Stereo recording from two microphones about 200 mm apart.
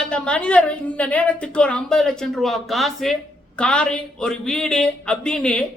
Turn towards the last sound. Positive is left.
turn(degrees=5)  # may be behind; listen again after turning